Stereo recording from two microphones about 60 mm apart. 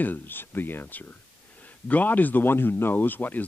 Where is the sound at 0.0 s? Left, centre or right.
Left.